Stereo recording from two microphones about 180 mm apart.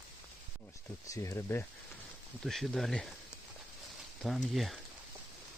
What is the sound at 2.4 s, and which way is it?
Speech, centre (ahead or behind).